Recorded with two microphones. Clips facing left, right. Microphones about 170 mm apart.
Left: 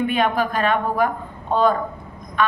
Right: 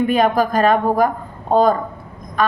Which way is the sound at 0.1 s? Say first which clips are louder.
Right 5 dB; 40° right (ahead or behind).